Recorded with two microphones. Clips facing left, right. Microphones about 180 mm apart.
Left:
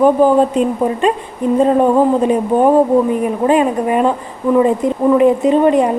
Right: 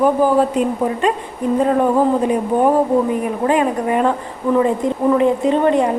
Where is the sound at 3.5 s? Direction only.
20° left (ahead or behind).